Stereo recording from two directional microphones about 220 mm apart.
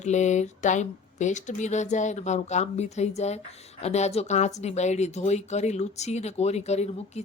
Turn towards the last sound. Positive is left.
turn(degrees=30)  # may be behind; listen again after turning